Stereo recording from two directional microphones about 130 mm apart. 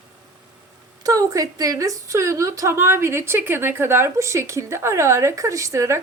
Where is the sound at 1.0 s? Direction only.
25° right (ahead or behind).